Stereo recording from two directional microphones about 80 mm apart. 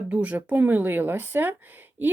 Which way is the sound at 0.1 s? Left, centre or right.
Centre.